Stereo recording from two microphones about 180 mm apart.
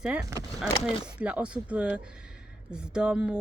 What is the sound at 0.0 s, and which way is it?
Speech, 5° right (ahead or behind).